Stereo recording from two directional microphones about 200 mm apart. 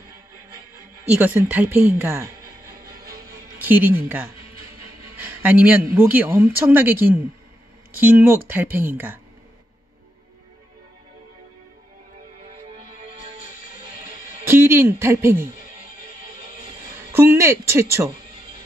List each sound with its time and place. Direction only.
1.0 s speech: 5° right (ahead or behind)
3.1 s music: 15° right (ahead or behind)
5.1 s speech: 10° right (ahead or behind)
14.5 s speech: 10° right (ahead or behind)
17.1 s speech: 10° right (ahead or behind)